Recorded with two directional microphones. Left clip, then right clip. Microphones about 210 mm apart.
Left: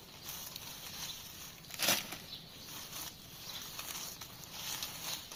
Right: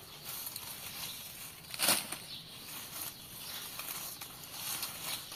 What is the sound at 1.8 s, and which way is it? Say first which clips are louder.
Bird flight: right 1 dB; 20° left (ahead or behind).